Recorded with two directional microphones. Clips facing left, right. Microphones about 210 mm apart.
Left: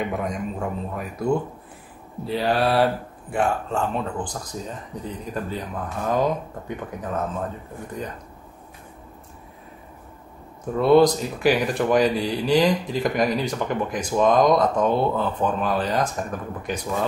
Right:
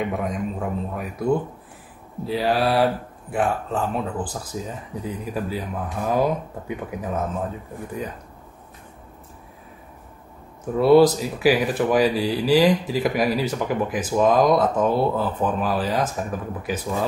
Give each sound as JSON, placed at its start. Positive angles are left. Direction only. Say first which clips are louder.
{"t": 0.0, "sound": "speech", "louder": "right 1 dB", "side_deg": 0}
{"t": 10.8, "sound": "speech", "louder": "right 2 dB", "side_deg": -5}